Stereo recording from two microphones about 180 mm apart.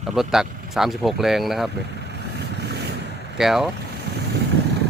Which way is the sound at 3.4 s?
Centre (ahead or behind).